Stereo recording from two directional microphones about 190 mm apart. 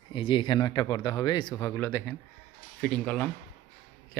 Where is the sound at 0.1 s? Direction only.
25° left (ahead or behind).